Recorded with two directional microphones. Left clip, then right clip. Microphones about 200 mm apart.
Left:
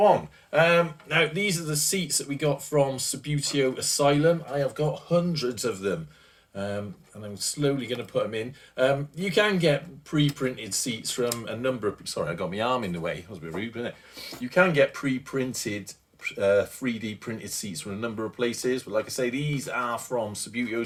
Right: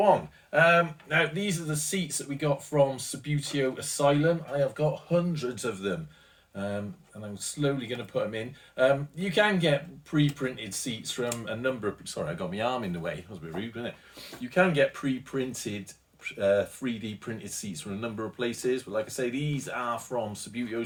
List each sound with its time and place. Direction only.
0.5 s speech: 40° left (ahead or behind)